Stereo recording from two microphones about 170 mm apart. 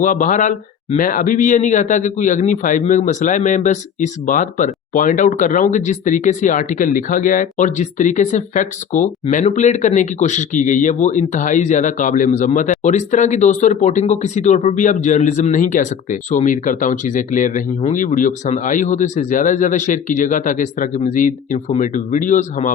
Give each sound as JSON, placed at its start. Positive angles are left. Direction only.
{"t": 0.0, "sound": "speech", "side_deg": 50}